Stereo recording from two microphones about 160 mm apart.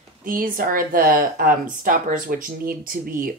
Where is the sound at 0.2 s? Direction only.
60° right (ahead or behind).